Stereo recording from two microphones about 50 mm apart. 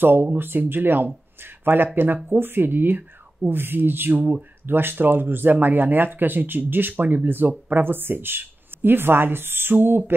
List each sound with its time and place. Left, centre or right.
0.0 s speech: right